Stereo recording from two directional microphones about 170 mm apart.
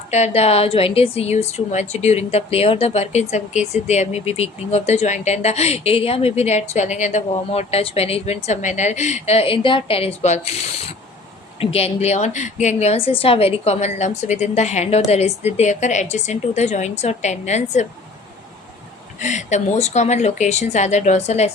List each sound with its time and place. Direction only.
0.1 s a woman's voice: 40° left (ahead or behind)
19.2 s speech: 45° left (ahead or behind)